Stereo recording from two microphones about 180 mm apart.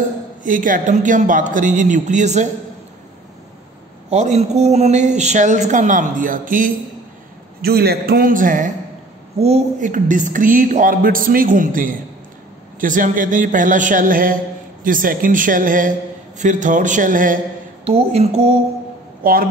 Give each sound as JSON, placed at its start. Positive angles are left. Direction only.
{"t": 0.4, "sound": "a man's voice", "side_deg": -45}
{"t": 4.1, "sound": "speech", "side_deg": -40}
{"t": 7.6, "sound": "a man's voice", "side_deg": -60}
{"t": 17.8, "sound": "speech", "side_deg": -35}
{"t": 19.2, "sound": "a man's voice", "side_deg": -55}